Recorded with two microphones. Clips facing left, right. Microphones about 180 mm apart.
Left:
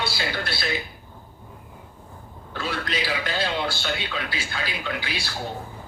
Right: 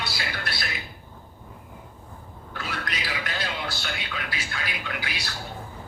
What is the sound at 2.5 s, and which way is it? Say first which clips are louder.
A man's voice: left 5 dB; 30° left (ahead or behind).